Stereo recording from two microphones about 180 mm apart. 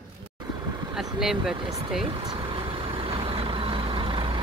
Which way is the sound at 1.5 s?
30° right (ahead or behind).